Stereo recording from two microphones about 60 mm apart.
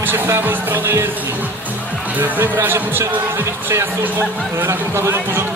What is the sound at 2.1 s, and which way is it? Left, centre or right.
Speech, right.